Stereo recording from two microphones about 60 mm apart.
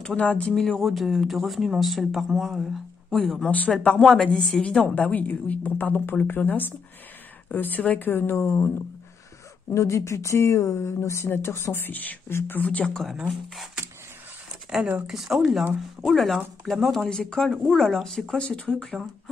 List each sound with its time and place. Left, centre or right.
0.0 s a woman's voice: left
0.6 s speech: centre
3.4 s a woman's voice: left
4.0 s speech: centre
4.8 s a woman's voice: left
9.8 s speech: left
11.2 s speech: left
12.3 s speech: left
12.5 s a woman's voice: left
14.8 s speech: right
15.0 s speech: centre
18.9 s speech: centre